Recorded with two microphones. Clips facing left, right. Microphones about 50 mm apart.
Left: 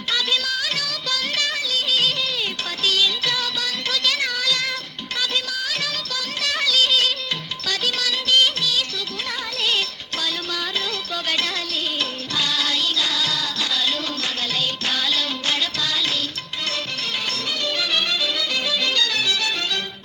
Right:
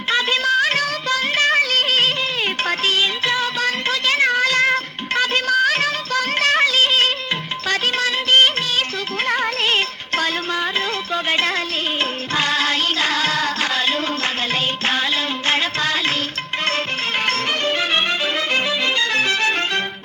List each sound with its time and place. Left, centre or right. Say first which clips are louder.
0.1 s music: right 6 dB; right
15.4 s music: right 7 dB; right
17.2 s music: right 7 dB; right